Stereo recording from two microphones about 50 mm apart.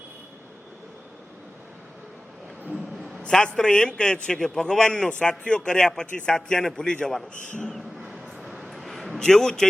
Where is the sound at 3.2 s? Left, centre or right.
Centre.